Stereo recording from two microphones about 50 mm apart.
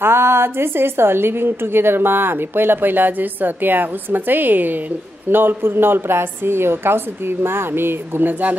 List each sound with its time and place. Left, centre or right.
0.0 s a woman's voice: right